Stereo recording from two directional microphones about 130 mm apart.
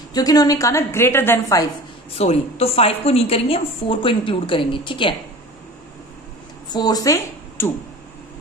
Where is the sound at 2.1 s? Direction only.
50° left (ahead or behind).